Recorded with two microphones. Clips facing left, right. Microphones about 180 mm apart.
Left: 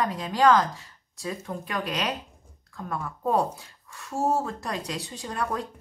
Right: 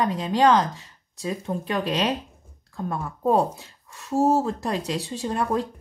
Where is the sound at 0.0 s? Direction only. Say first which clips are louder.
Right 2 dB; 25° right (ahead or behind).